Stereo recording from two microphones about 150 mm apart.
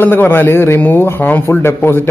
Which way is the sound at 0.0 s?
15° left (ahead or behind).